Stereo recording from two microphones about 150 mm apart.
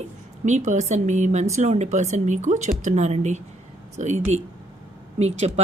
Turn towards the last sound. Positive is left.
turn(degrees=-45)  # may be behind; listen again after turning